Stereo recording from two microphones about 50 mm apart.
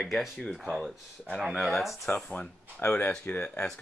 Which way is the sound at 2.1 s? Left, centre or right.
Left.